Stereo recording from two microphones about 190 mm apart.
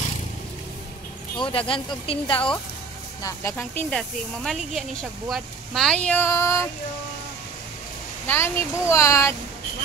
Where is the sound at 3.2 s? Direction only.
15° left (ahead or behind).